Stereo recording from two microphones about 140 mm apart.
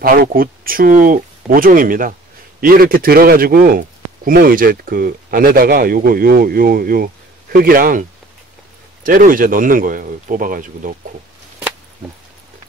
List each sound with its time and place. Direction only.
0.0 s a man's voice: 90° right; by 11.0 s 75° right (ahead or behind)